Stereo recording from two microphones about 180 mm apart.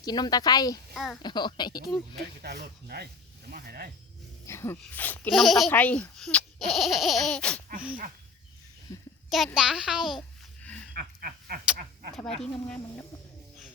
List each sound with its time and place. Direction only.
0.0 s speech: 20° left (ahead or behind)
0.9 s speech: centre (ahead or behind)
1.2 s speech: 25° left (ahead or behind)
2.4 s speech: 60° right (ahead or behind)
4.4 s speech: 15° left (ahead or behind)
8.9 s a sound: 20° left (ahead or behind)
9.6 s babbling: 5° right (ahead or behind)
10.9 s a sound: 55° right (ahead or behind)
12.1 s speech: 5° left (ahead or behind)